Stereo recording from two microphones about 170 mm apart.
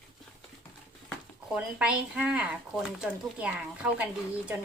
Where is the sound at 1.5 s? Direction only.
5° right (ahead or behind).